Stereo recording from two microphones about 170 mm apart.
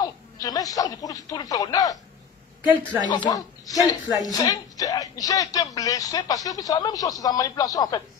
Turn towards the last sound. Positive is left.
turn(degrees=20)  # may be behind; listen again after turning